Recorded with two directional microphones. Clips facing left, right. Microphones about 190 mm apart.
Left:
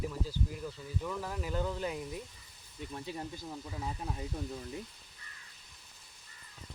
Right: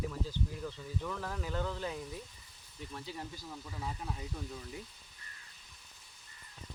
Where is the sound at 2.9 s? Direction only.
25° left (ahead or behind).